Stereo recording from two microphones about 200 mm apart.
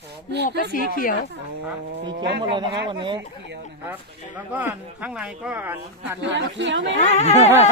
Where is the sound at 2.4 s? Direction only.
25° right (ahead or behind).